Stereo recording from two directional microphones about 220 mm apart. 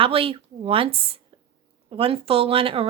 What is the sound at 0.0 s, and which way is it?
Speech, 25° right (ahead or behind).